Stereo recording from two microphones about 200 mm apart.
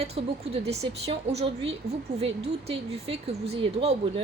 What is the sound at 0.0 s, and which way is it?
A woman's voice, 30° right (ahead or behind).